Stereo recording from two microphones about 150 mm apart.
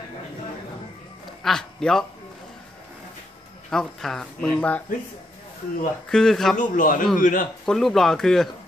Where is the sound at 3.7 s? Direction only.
5° left (ahead or behind).